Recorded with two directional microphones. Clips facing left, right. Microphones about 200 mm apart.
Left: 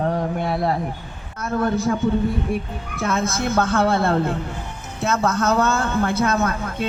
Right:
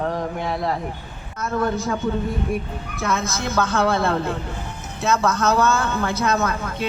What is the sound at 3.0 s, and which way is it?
Speech, 55° left (ahead or behind).